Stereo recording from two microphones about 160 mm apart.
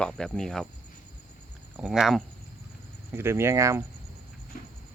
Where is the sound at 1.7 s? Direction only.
5° right (ahead or behind).